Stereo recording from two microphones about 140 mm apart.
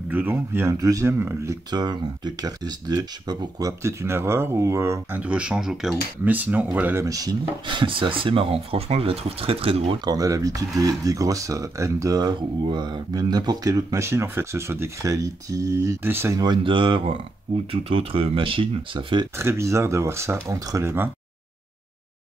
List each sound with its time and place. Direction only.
0.1 s speech: 15° right (ahead or behind); by 9.8 s 40° right (ahead or behind)
10.0 s speech: 25° right (ahead or behind)
16.3 s speech: 35° right (ahead or behind)
19.3 s speech: 20° right (ahead or behind)